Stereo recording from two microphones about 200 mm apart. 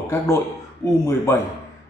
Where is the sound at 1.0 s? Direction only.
15° left (ahead or behind).